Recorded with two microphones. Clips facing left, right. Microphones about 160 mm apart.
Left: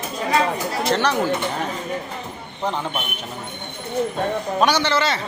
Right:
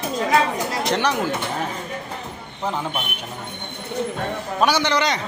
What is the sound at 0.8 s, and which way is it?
Speech, 15° right (ahead or behind).